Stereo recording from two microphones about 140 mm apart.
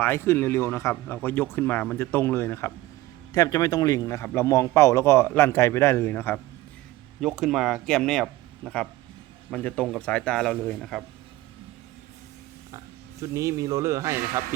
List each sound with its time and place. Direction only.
0.0 s a man's voice: 20° left (ahead or behind)
7.2 s speech: 5° right (ahead or behind)
12.7 s speech: 25° right (ahead or behind)